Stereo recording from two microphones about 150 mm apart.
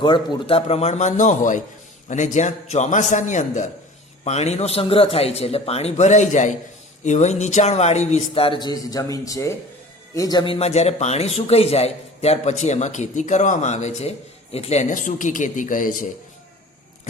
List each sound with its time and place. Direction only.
0.0 s a man's voice: 30° left (ahead or behind); by 16.0 s 65° left (ahead or behind)